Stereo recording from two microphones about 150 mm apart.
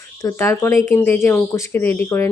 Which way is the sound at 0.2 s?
20° left (ahead or behind).